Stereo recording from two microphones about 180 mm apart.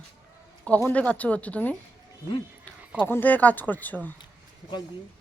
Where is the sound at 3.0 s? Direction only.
10° left (ahead or behind).